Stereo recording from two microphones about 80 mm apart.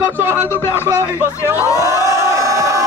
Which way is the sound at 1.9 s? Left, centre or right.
Right.